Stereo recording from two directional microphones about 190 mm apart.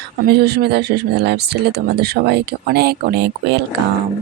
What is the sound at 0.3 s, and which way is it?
Speech, 55° right (ahead or behind).